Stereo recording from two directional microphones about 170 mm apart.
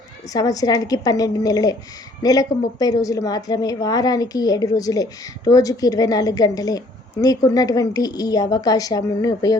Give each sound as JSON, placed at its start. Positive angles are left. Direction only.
{"t": 0.3, "sound": "a woman's voice", "side_deg": 20}